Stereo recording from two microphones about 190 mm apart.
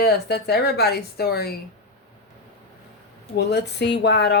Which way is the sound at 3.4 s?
60° left (ahead or behind).